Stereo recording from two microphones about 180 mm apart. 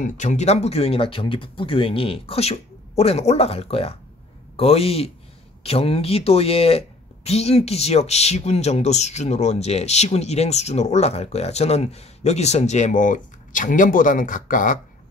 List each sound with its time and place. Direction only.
0.0 s speech: 40° left (ahead or behind)